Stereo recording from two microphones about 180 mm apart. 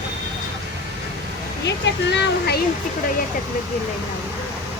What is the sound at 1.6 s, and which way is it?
Speech, 70° left (ahead or behind).